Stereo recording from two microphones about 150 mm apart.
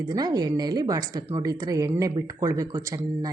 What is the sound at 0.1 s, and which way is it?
Speech, 25° right (ahead or behind).